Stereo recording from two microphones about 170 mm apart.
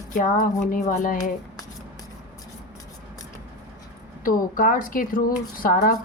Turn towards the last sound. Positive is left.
turn(degrees=55)  # may be behind; listen again after turning